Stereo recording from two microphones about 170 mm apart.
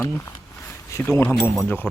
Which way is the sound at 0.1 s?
15° left (ahead or behind).